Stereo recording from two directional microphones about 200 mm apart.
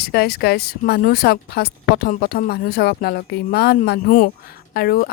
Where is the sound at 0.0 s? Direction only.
50° left (ahead or behind).